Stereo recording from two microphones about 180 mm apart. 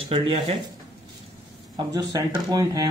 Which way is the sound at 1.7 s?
20° right (ahead or behind).